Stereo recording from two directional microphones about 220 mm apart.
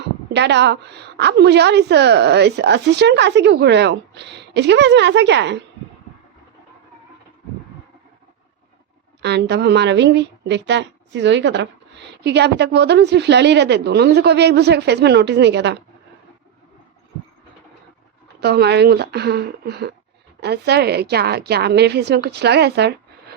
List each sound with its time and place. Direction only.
0.3 s a woman's voice: 50° right (ahead or behind)
9.2 s a woman's voice: 50° right (ahead or behind)
18.3 s a woman's voice: 45° right (ahead or behind)